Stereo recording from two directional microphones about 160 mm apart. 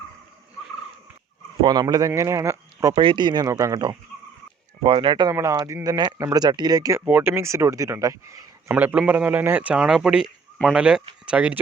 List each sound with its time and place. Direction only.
1.6 s speech: 25° right (ahead or behind)
2.9 s speech: 30° right (ahead or behind)
5.3 s speech: 20° right (ahead or behind)
8.7 s speech: 10° right (ahead or behind)